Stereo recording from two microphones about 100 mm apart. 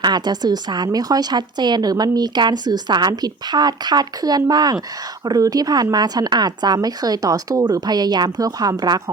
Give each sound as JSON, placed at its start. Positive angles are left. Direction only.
{"t": 0.0, "sound": "a woman's voice", "side_deg": -45}